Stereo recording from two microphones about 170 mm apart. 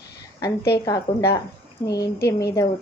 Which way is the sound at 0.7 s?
20° left (ahead or behind).